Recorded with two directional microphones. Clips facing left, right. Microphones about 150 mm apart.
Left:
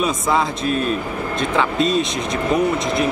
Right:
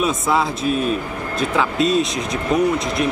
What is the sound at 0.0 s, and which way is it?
Speech, 5° right (ahead or behind).